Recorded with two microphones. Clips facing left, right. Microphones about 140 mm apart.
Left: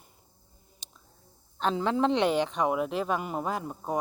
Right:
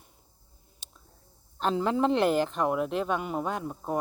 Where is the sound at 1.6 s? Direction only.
Centre (ahead or behind).